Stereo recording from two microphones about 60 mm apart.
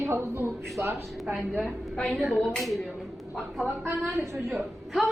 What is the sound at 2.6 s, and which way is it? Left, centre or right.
Speech, centre.